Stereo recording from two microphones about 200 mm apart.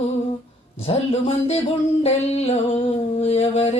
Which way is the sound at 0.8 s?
30° left (ahead or behind).